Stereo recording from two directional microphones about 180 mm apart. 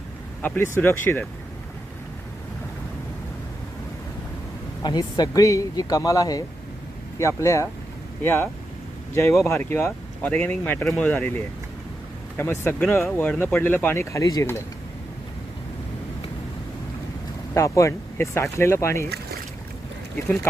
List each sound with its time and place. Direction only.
0.4 s speech: 10° left (ahead or behind)
4.8 s speech: 25° left (ahead or behind)
9.5 s speech: 10° left (ahead or behind)
12.8 s speech: centre (ahead or behind)
17.5 s speech: 15° left (ahead or behind)